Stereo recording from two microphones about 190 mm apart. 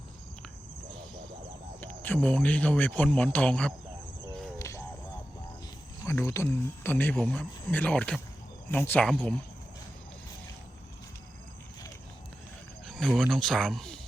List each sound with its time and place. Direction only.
1.8 s speech: 10° left (ahead or behind)
4.5 s a sound: 15° left (ahead or behind)
6.1 s speech: 15° left (ahead or behind)
12.8 s speech: centre (ahead or behind)